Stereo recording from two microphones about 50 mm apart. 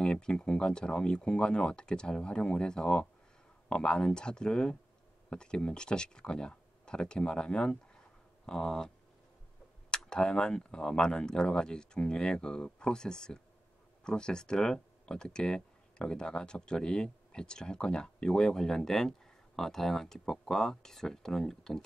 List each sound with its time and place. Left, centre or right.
0.0 s speech: centre